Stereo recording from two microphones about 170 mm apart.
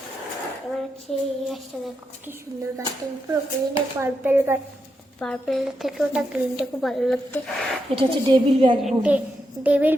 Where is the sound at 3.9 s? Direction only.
15° right (ahead or behind).